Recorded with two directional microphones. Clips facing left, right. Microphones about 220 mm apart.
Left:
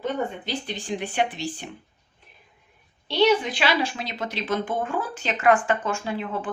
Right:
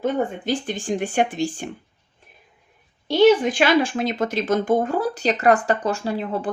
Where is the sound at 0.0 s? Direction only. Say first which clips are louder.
Right 5 dB; 50° right (ahead or behind).